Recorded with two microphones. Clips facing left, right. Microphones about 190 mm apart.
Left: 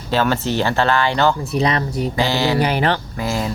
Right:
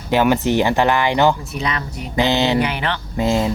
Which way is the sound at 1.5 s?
35° left (ahead or behind).